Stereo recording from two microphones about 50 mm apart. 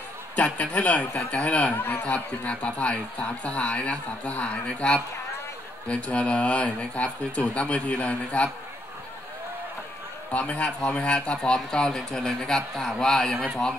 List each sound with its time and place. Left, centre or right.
0.4 s speech: left
10.3 s speech: left; by 13.4 s centre